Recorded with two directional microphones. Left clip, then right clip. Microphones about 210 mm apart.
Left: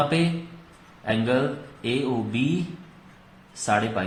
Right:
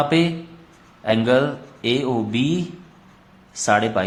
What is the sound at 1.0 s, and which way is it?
A man's voice, 35° right (ahead or behind).